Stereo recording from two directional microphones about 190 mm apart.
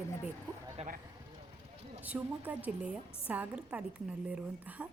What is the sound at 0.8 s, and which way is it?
Speech, 35° right (ahead or behind).